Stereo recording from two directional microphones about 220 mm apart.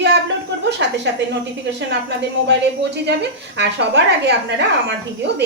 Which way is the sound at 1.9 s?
50° right (ahead or behind).